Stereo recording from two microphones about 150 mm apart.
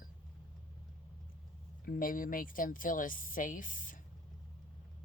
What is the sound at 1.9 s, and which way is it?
Speech, 65° left (ahead or behind).